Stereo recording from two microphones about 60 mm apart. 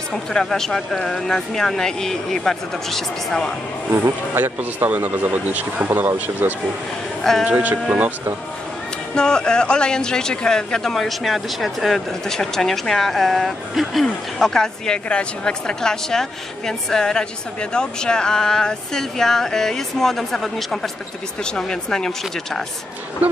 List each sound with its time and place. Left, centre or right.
0.1 s speech: centre
3.9 s speech: right
7.3 s speech: centre
9.1 s speech: centre
14.0 s speech: centre